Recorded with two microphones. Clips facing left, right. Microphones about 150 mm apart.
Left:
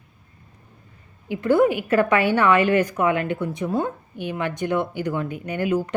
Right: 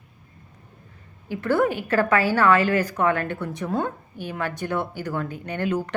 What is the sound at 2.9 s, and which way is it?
Speech, 10° left (ahead or behind).